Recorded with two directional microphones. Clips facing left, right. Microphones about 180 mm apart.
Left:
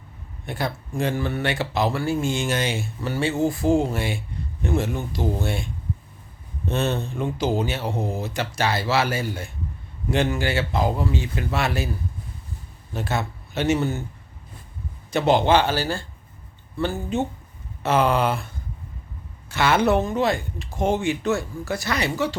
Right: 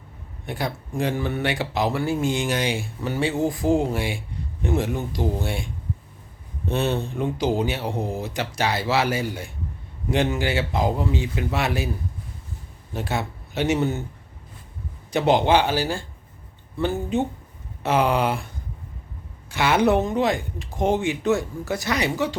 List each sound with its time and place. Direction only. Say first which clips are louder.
0.4 s speech: even; 15° right (ahead or behind)
12.9 s speech: even; 15° right (ahead or behind)
15.1 s speech: even; 15° right (ahead or behind)